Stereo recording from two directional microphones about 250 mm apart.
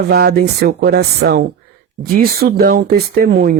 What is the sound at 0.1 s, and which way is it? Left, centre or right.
Speech, right.